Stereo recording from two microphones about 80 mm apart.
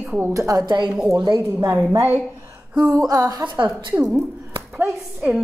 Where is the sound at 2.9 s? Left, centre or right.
Right.